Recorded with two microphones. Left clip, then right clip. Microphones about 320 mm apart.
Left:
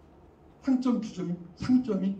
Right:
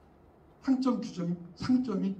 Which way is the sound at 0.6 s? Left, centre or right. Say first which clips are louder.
Left 1 dB; centre.